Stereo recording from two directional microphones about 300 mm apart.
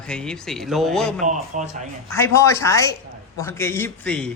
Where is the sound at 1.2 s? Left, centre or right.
Right.